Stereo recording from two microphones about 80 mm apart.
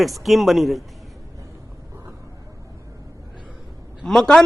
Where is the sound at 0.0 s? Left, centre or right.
Centre.